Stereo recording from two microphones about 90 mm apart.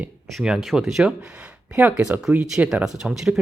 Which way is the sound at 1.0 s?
15° right (ahead or behind).